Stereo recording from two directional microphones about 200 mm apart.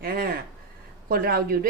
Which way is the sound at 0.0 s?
50° right (ahead or behind).